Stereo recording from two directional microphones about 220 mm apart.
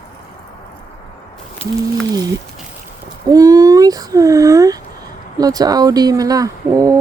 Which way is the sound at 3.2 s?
15° right (ahead or behind).